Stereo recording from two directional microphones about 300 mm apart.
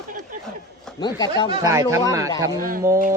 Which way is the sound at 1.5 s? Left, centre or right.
Centre.